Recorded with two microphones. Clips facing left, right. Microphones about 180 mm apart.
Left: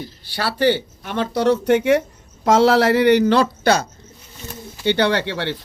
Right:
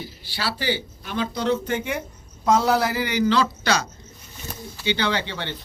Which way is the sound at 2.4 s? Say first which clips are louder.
Left 5 dB; 90° left.